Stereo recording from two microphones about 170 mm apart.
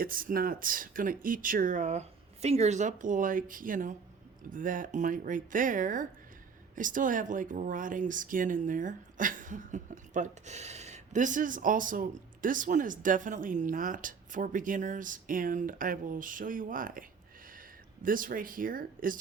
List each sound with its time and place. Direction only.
0.0 s speech: 55° right (ahead or behind)